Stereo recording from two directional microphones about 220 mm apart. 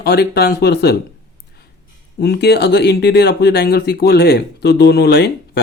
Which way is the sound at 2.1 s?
45° left (ahead or behind).